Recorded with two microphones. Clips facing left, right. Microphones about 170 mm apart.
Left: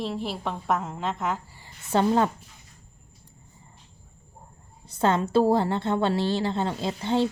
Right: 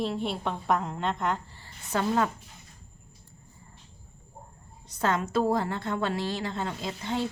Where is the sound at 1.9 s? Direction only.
30° left (ahead or behind).